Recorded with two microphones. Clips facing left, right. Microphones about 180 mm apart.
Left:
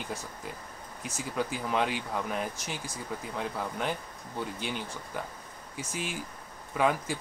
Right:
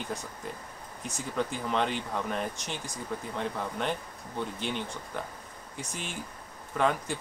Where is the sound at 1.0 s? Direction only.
5° left (ahead or behind).